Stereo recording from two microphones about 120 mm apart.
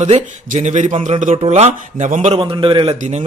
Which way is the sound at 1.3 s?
55° right (ahead or behind).